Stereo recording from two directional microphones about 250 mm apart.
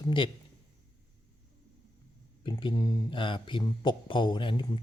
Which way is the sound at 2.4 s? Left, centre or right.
Centre.